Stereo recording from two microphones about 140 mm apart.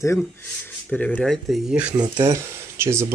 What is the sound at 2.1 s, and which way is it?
Speech, 25° right (ahead or behind).